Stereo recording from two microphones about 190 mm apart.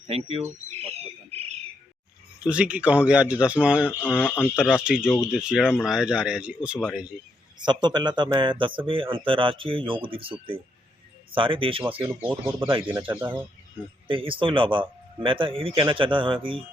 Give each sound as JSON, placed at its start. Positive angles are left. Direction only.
{"t": 0.1, "sound": "insect", "side_deg": -30}
{"t": 2.4, "sound": "speech", "side_deg": -5}
{"t": 3.8, "sound": "speech", "side_deg": 10}
{"t": 4.7, "sound": "speech", "side_deg": -5}
{"t": 7.6, "sound": "speech", "side_deg": -25}
{"t": 13.1, "sound": "speech", "side_deg": -10}
{"t": 14.1, "sound": "speech", "side_deg": -30}